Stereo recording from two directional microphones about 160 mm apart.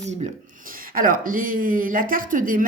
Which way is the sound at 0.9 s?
60° right (ahead or behind).